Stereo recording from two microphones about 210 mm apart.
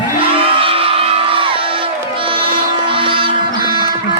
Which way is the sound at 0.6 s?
25° right (ahead or behind).